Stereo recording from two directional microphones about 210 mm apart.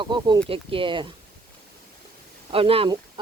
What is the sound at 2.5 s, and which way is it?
Speech, 25° right (ahead or behind).